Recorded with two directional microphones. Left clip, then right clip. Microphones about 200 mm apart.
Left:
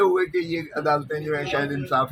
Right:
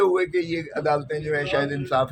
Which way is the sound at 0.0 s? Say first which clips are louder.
Even; 20° right (ahead or behind).